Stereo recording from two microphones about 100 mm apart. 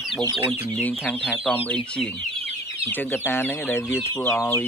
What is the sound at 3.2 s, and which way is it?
Speech, 25° left (ahead or behind).